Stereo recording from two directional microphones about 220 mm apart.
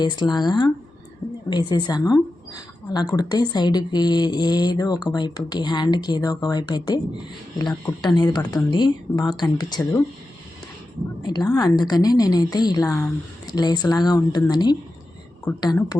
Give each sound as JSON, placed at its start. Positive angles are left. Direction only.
{"t": 0.0, "sound": "speech", "side_deg": 20}
{"t": 8.0, "sound": "a woman's voice", "side_deg": 20}
{"t": 11.2, "sound": "a woman's voice", "side_deg": 20}